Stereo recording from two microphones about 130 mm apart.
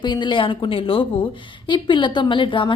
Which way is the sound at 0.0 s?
35° left (ahead or behind).